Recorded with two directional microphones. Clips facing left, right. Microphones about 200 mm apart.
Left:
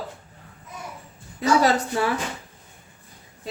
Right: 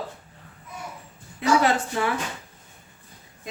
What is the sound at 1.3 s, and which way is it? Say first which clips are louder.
Speech: left 1 dB; 35° left (ahead or behind).